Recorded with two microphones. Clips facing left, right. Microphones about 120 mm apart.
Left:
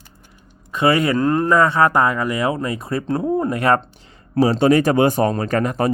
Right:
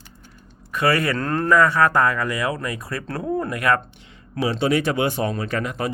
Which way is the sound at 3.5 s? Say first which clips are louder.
Left 4 dB; 30° left (ahead or behind).